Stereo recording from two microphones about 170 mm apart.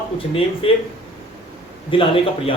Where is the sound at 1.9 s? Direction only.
30° left (ahead or behind).